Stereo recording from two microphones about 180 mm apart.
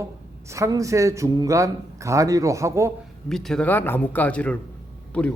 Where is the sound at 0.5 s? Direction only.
15° right (ahead or behind).